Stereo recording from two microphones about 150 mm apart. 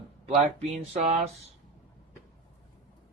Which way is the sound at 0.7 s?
50° right (ahead or behind).